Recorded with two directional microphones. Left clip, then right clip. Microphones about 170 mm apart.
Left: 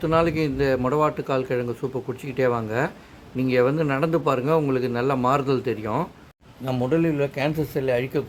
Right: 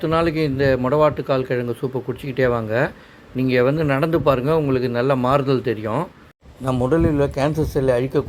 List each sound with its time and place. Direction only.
0.0 s a man's voice: 10° right (ahead or behind)